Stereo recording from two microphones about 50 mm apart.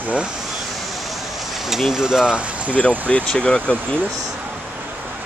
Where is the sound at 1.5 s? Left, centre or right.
Centre; by 2.7 s right.